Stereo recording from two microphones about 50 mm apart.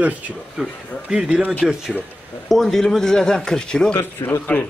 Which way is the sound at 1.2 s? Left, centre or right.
Right.